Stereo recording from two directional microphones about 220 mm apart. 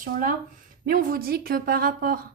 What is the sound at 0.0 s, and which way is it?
A woman's voice, 40° right (ahead or behind).